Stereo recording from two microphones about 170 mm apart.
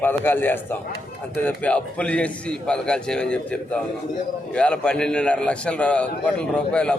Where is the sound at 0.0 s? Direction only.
10° left (ahead or behind).